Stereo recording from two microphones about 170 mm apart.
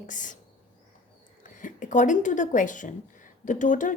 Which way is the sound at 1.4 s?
50° left (ahead or behind).